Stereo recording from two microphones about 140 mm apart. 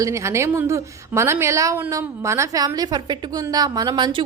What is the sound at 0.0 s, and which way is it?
A woman's voice, 20° right (ahead or behind).